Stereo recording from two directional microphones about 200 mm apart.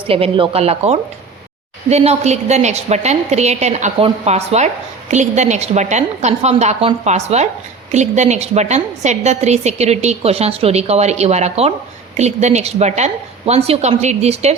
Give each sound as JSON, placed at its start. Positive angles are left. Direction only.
{"t": 0.1, "sound": "a woman's voice", "side_deg": -30}